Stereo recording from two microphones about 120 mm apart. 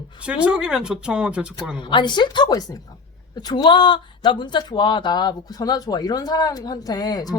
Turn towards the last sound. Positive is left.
turn(degrees=35)  # may be behind; listen again after turning